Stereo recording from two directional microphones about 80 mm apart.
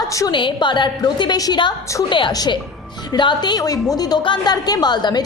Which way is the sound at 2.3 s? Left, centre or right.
Left.